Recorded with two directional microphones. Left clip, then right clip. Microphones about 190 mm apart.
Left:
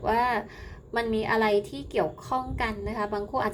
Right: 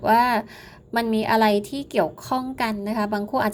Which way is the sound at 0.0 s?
35° right (ahead or behind).